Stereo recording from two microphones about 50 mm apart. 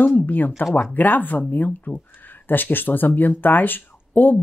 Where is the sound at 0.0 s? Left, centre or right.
Left.